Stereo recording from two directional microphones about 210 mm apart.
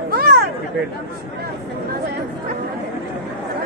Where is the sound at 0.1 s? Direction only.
45° right (ahead or behind).